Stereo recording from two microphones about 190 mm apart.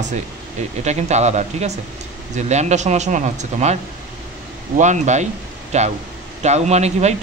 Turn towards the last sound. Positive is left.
turn(degrees=-35)  # may be behind; listen again after turning